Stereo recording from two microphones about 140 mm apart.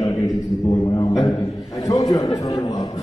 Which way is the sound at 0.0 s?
30° left (ahead or behind).